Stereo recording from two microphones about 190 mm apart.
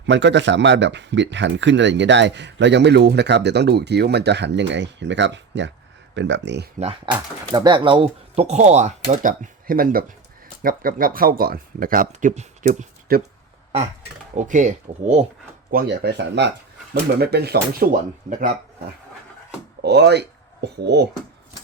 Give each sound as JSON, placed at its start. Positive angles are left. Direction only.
{"t": 0.0, "sound": "speech", "side_deg": -70}
{"t": 6.7, "sound": "speech", "side_deg": -35}
{"t": 7.5, "sound": "speech", "side_deg": -25}
{"t": 14.3, "sound": "speech", "side_deg": -40}
{"t": 15.7, "sound": "speech", "side_deg": -60}
{"t": 18.3, "sound": "speech", "side_deg": -45}
{"t": 19.8, "sound": "speech", "side_deg": -60}